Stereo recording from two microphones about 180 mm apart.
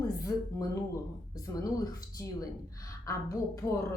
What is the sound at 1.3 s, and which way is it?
A woman's voice, 20° left (ahead or behind).